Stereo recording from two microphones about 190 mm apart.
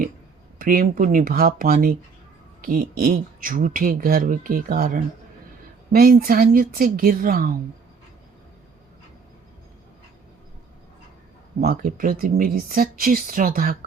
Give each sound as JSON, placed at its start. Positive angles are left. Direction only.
{"t": 0.6, "sound": "speech", "side_deg": -45}
{"t": 11.6, "sound": "speech", "side_deg": -50}